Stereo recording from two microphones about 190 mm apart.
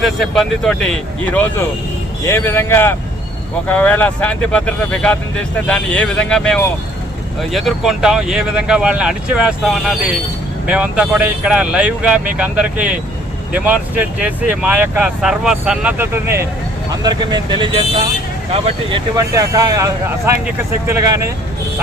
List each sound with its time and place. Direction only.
0.0 s speech: centre (ahead or behind); by 18.9 s 30° right (ahead or behind)
19.1 s speech: 20° right (ahead or behind)